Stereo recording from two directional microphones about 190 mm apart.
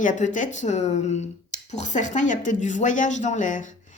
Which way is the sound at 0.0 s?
40° left (ahead or behind).